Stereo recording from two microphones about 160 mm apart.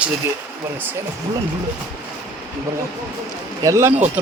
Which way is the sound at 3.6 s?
20° right (ahead or behind).